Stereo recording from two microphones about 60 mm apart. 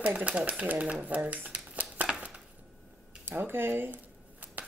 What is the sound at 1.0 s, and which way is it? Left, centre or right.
Shuffling cards, right.